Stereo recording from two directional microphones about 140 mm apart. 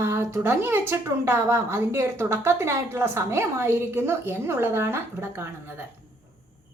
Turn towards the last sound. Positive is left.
turn(degrees=-15)  # may be behind; listen again after turning